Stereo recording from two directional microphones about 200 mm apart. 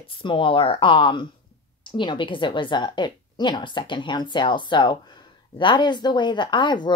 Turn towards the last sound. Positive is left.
turn(degrees=25)  # may be behind; listen again after turning